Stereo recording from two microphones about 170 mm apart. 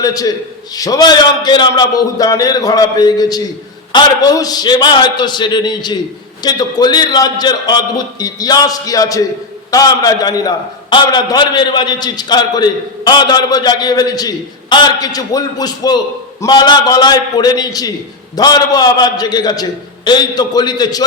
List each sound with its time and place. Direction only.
0.0 s a man's voice: 20° left (ahead or behind)